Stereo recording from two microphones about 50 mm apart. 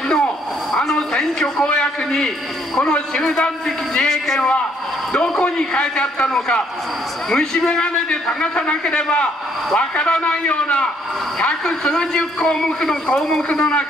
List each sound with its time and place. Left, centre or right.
0.7 s a man's voice: centre
5.4 s a man's voice: left
11.6 s a man's voice: centre
13.6 s a man's voice: left